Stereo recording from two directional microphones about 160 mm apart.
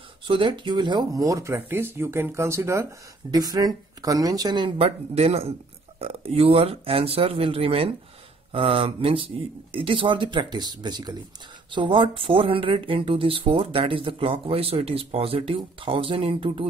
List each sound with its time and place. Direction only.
0.3 s speech: 30° right (ahead or behind)